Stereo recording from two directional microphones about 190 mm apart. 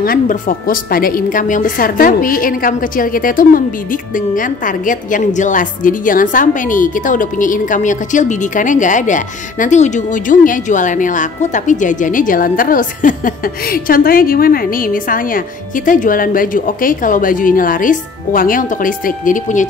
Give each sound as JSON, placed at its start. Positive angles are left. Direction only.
{"t": 0.0, "sound": "a woman's voice", "side_deg": 45}